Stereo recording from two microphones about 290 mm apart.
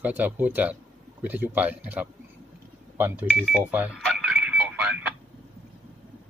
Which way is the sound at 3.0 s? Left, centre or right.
Centre.